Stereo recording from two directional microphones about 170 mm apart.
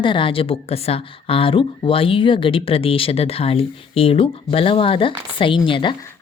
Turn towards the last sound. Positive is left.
turn(degrees=30)  # may be behind; listen again after turning